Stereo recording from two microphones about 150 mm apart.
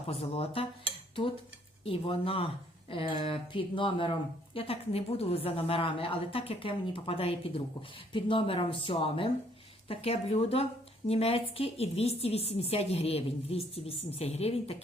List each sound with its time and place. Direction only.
0.1 s speech: 40° left (ahead or behind)
1.8 s a woman's voice: 40° left (ahead or behind)